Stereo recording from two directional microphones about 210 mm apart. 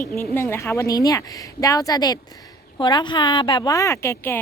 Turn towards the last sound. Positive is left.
turn(degrees=10)  # may be behind; listen again after turning